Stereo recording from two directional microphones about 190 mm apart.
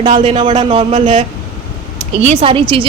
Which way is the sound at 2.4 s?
30° right (ahead or behind).